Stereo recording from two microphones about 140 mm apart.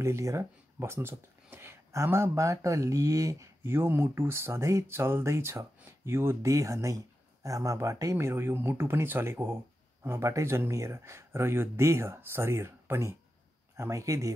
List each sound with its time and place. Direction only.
0.0 s speech: 20° right (ahead or behind)